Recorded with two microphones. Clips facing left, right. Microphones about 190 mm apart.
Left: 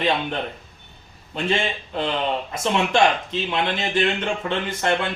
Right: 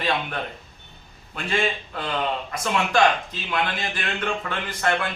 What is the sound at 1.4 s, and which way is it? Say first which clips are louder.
A man's voice: left 2 dB; 25° left (ahead or behind).